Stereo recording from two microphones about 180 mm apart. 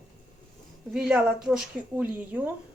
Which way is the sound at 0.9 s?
5° right (ahead or behind).